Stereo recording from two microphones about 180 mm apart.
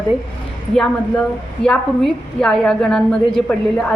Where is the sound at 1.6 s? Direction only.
5° left (ahead or behind).